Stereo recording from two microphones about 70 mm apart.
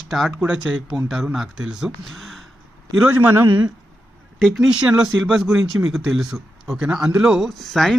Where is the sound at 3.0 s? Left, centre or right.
Right.